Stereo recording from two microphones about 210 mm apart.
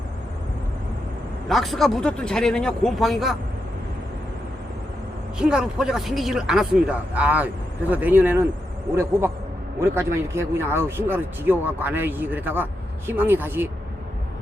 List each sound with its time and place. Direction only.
1.5 s speech: centre (ahead or behind)
5.4 s speech: 5° right (ahead or behind)
9.8 s a man's voice: 10° right (ahead or behind)